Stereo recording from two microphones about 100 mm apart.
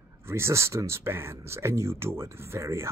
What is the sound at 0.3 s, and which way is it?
Speech, 25° right (ahead or behind).